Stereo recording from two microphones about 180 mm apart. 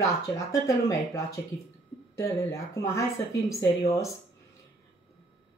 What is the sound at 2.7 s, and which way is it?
Speech, 15° left (ahead or behind).